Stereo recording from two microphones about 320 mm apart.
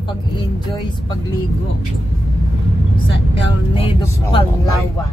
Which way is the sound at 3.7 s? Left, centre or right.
Centre.